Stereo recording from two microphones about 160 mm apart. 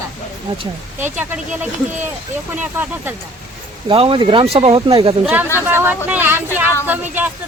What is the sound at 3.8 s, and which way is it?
Speech, 35° right (ahead or behind).